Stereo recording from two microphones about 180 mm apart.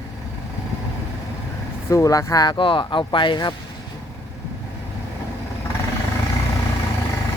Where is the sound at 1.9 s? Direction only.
20° left (ahead or behind).